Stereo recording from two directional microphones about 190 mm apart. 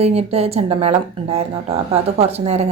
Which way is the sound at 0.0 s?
30° right (ahead or behind).